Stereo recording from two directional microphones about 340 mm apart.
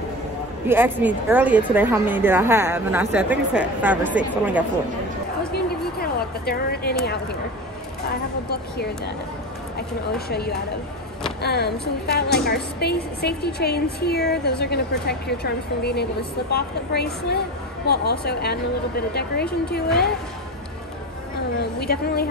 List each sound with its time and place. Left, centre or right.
0.7 s a woman's voice: centre
5.7 s speech: left
9.8 s a woman's voice: left
21.5 s a woman's voice: left